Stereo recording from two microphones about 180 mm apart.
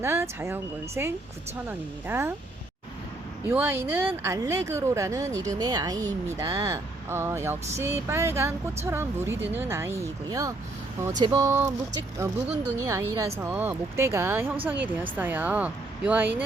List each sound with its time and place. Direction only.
0.0 s speech: 15° right (ahead or behind)
3.5 s speech: 10° right (ahead or behind)